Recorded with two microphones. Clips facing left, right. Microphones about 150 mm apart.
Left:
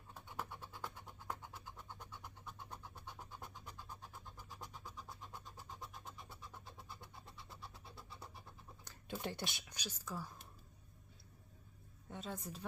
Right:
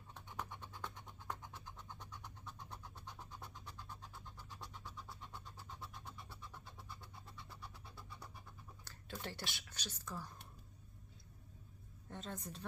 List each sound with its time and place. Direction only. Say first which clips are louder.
0.1 s scratch: left 1 dB; 5° left (ahead or behind)
7.5 s vehicle: left 2 dB; 25° left (ahead or behind)
8.8 s a sound: left 4 dB; 15° left (ahead or behind)
9.2 s speech: left 4 dB; 20° left (ahead or behind)
12.0 s a woman's voice: left 1 dB; 5° left (ahead or behind)